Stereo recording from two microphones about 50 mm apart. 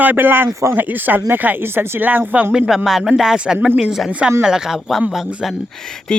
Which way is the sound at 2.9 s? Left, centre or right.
Centre.